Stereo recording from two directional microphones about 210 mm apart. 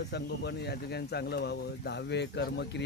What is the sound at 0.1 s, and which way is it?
Speech, 55° left (ahead or behind).